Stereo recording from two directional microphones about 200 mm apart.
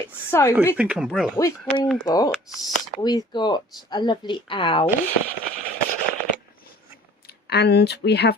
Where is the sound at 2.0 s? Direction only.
20° left (ahead or behind).